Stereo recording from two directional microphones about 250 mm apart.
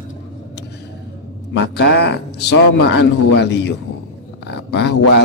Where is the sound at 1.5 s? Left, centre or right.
Left.